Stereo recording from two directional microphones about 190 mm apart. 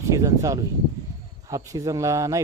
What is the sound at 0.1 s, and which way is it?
Speech, 15° right (ahead or behind).